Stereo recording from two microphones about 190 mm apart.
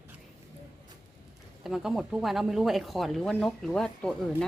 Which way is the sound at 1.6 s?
Centre (ahead or behind).